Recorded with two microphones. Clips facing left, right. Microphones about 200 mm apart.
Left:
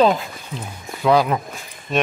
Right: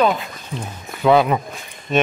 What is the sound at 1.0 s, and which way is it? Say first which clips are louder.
Speech: right 2 dB; centre (ahead or behind).